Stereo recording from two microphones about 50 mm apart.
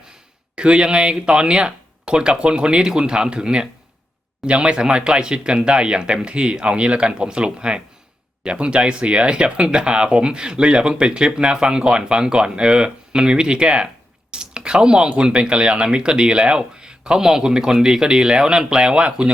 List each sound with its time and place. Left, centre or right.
0.5 s speech: right